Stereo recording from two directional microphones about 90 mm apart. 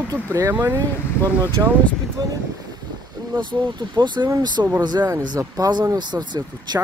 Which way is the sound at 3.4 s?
60° right (ahead or behind).